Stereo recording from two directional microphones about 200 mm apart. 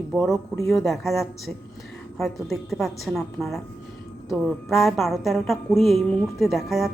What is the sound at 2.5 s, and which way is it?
Music, centre (ahead or behind).